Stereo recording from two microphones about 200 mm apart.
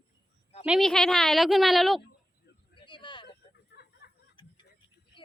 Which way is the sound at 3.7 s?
55° left (ahead or behind).